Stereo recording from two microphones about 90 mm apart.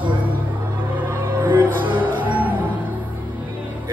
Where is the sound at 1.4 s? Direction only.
20° right (ahead or behind).